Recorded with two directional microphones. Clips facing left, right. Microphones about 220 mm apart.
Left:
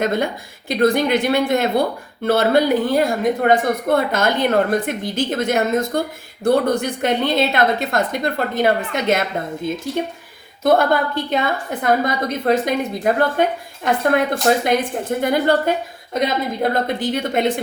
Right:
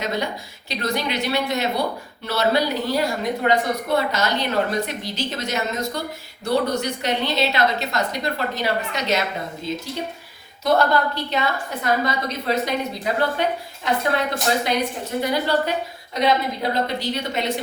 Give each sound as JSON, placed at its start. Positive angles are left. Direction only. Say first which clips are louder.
{"t": 0.0, "sound": "a woman's voice", "louder": "left 6 dB", "side_deg": 50}
{"t": 16.7, "sound": "a woman's voice", "louder": "left 4 dB", "side_deg": 50}